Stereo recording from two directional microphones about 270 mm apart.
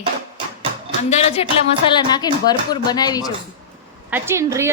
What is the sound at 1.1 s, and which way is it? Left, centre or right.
A woman's voice, left.